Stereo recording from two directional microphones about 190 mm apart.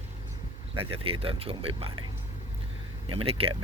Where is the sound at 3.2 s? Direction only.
30° right (ahead or behind).